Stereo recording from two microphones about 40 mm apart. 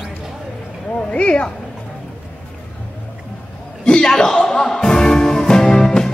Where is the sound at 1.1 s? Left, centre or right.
Left.